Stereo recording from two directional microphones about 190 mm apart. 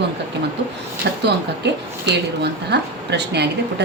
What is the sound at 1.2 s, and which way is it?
Speech, 65° right (ahead or behind).